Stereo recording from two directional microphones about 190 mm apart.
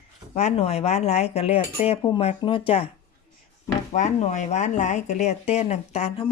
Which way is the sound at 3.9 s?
35° left (ahead or behind).